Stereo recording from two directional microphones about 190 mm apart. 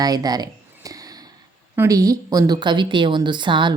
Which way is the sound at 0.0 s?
20° right (ahead or behind).